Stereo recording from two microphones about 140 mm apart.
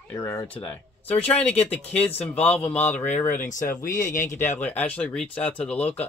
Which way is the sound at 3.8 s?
70° left (ahead or behind).